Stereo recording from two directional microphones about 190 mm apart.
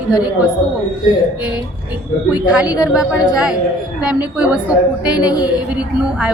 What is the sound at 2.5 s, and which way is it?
A woman's voice, 5° right (ahead or behind).